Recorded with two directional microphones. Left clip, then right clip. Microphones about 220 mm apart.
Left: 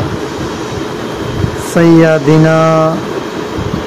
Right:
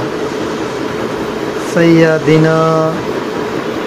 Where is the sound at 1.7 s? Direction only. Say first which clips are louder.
Left 2 dB; 45° left (ahead or behind).